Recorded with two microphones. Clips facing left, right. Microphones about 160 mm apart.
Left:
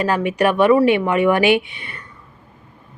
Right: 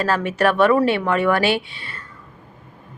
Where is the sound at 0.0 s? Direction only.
15° left (ahead or behind).